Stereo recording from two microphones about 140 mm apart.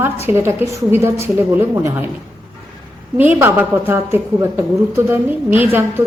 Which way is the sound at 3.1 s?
15° right (ahead or behind).